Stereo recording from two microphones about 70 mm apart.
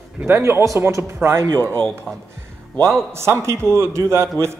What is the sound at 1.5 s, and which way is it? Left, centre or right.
Speech, left.